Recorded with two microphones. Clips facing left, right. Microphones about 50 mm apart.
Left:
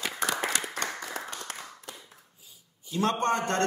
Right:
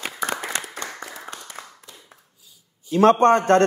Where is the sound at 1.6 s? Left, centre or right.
Right.